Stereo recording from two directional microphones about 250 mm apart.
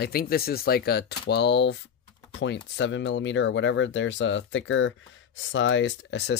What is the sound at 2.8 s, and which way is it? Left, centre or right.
Speech, left.